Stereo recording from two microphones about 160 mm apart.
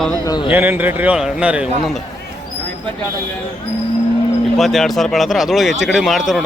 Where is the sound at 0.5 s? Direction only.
10° right (ahead or behind).